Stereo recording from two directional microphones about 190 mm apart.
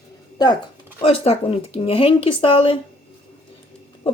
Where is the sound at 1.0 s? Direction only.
30° left (ahead or behind).